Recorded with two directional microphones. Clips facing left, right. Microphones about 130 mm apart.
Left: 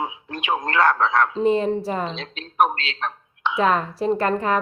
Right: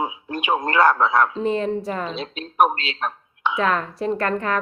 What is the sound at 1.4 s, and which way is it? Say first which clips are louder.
A woman's voice: left 3 dB; 5° left (ahead or behind).